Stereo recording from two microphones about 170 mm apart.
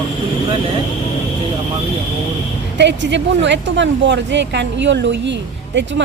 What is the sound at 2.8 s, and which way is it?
Speech, 90° right.